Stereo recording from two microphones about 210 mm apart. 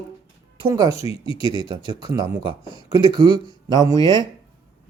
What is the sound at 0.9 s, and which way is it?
Speech, 30° left (ahead or behind).